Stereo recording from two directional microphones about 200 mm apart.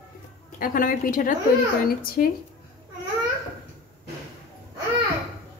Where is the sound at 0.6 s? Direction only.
45° left (ahead or behind).